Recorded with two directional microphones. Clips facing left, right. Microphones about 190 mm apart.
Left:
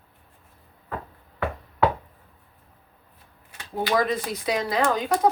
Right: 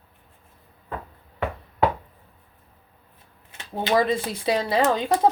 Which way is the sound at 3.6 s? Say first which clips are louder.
Right 2 dB; 25° right (ahead or behind).